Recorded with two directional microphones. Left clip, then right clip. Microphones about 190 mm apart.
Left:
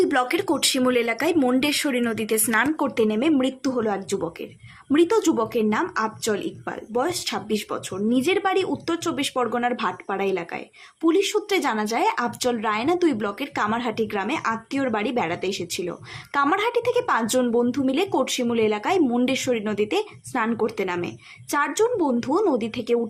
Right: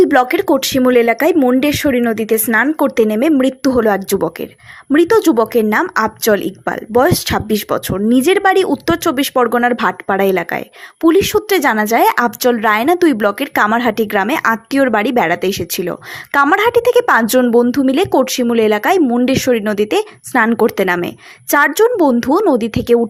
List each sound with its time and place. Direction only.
0.0 s speech: 40° right (ahead or behind)